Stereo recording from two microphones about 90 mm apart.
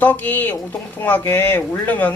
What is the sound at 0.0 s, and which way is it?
Speech, 20° left (ahead or behind).